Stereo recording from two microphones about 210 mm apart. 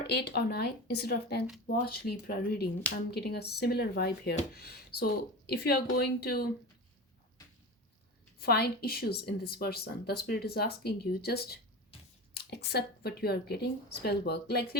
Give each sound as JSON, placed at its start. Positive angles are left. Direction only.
{"t": 0.1, "sound": "speech", "side_deg": 50}
{"t": 8.4, "sound": "speech", "side_deg": 50}